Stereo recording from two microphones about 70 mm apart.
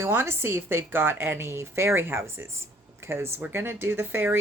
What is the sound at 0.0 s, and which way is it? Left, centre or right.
Speech, right.